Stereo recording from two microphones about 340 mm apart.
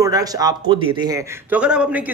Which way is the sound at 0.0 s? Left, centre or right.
Centre.